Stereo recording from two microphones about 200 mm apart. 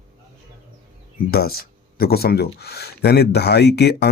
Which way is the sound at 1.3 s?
50° left (ahead or behind).